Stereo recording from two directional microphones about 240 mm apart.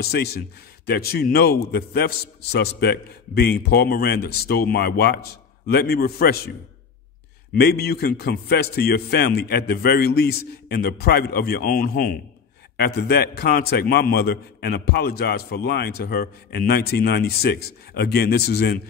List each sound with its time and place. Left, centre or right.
0.0 s a man's voice: left
7.5 s a man's voice: left